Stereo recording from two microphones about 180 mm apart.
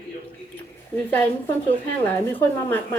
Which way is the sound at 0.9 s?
10° left (ahead or behind).